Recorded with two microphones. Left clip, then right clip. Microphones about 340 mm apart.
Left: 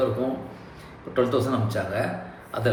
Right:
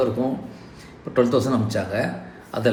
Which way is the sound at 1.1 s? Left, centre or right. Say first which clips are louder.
Right 4 dB; right.